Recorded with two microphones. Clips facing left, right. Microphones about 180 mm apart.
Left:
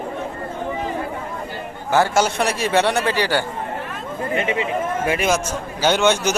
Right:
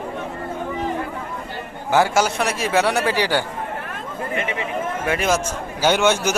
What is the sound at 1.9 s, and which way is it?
Speech, 10° right (ahead or behind).